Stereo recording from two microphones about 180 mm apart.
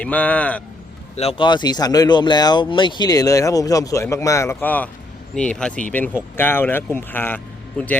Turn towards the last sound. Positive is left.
turn(degrees=10)  # may be behind; listen again after turning